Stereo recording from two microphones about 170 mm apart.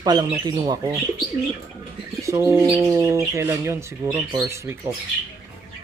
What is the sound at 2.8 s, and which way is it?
Speech, 20° right (ahead or behind).